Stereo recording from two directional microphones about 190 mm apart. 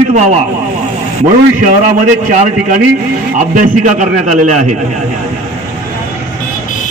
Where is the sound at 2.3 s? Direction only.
40° right (ahead or behind).